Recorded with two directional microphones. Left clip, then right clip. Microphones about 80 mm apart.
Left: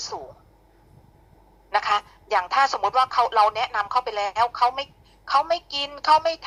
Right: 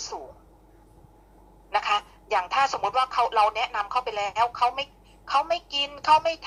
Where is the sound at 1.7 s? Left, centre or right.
Left.